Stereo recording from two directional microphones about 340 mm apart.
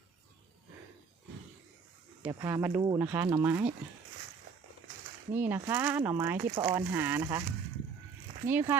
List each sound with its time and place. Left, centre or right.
2.2 s speech: centre
5.3 s speech: centre
8.4 s speech: centre